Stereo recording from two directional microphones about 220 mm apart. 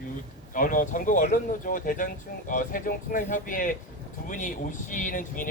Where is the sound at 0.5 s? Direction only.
40° left (ahead or behind).